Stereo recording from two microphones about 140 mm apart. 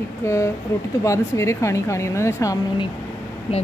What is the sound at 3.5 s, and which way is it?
Speech, 45° left (ahead or behind).